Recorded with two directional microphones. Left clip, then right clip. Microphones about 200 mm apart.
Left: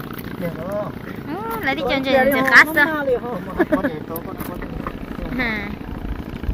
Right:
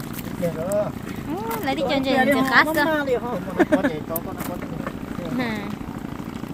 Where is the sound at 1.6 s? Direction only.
15° right (ahead or behind).